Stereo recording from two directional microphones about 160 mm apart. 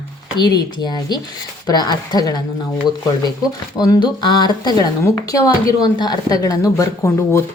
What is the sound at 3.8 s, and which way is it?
Speech, 25° left (ahead or behind).